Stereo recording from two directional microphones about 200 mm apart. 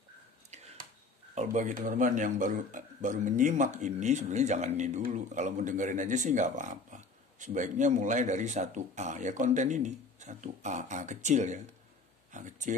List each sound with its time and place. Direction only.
1.3 s speech: 40° right (ahead or behind)